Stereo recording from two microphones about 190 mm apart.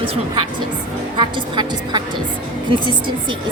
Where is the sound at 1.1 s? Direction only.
25° right (ahead or behind).